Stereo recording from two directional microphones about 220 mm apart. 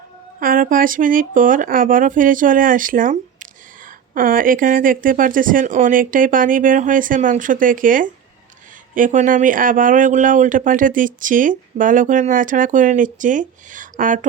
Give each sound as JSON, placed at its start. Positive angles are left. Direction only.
{"t": 0.3, "sound": "speech", "side_deg": -40}